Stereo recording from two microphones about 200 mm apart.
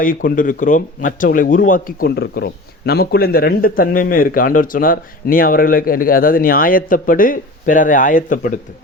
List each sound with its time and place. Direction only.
0.0 s speech: 45° left (ahead or behind)